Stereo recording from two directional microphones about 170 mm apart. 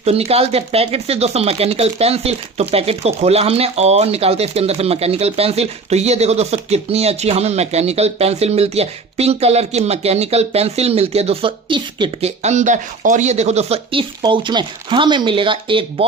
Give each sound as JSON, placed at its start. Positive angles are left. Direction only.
{"t": 0.0, "sound": "speech", "side_deg": -35}
{"t": 12.4, "sound": "speech", "side_deg": -45}